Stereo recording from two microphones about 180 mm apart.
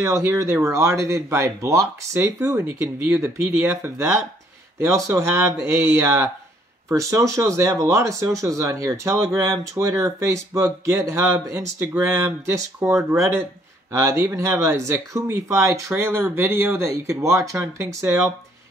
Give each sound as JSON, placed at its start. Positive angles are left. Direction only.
{"t": 0.0, "sound": "speech", "side_deg": -15}